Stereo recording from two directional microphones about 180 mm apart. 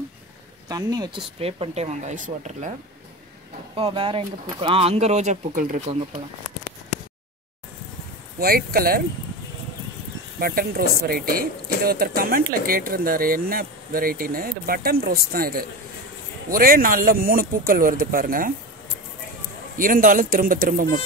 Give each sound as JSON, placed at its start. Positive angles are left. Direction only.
{"t": 0.7, "sound": "speech", "side_deg": -20}
{"t": 1.4, "sound": "speech", "side_deg": -35}
{"t": 3.7, "sound": "speech", "side_deg": -30}
{"t": 8.4, "sound": "speech", "side_deg": -55}
{"t": 10.4, "sound": "speech", "side_deg": -55}
{"t": 19.8, "sound": "speech", "side_deg": -50}